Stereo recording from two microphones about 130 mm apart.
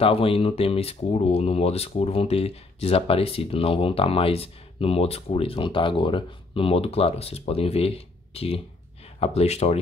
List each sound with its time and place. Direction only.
0.0 s speech: 45° left (ahead or behind)